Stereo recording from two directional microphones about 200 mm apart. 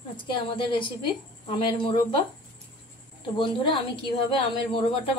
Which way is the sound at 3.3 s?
25° left (ahead or behind).